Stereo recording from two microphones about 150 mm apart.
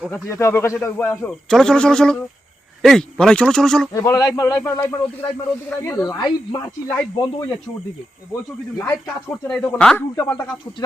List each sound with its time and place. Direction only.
0.1 s speech: 20° left (ahead or behind)
3.9 s speech: 20° left (ahead or behind)
8.8 s speech: 15° left (ahead or behind)